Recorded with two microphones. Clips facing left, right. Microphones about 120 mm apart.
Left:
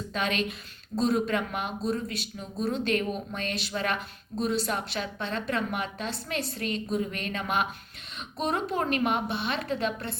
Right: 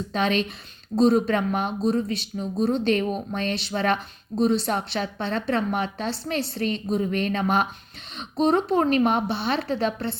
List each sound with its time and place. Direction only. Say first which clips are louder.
0.1 s a woman's voice: right 5 dB; 30° right (ahead or behind)